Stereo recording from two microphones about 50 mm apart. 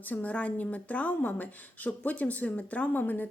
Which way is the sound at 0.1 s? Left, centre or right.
Left.